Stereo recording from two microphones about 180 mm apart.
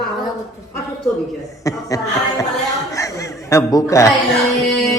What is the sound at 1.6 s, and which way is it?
Speech, 20° left (ahead or behind).